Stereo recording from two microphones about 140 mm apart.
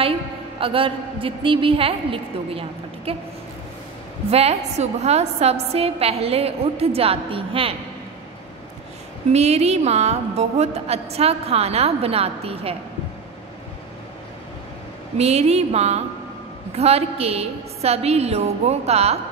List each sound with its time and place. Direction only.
0.6 s a woman's voice: 40° right (ahead or behind)
4.3 s a woman's voice: 45° right (ahead or behind)
9.3 s a woman's voice: 50° right (ahead or behind)
15.1 s a woman's voice: 50° right (ahead or behind)